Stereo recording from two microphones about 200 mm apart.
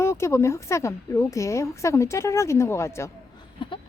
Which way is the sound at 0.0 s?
15° left (ahead or behind).